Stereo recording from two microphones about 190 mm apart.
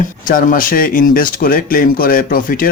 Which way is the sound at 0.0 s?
45° left (ahead or behind).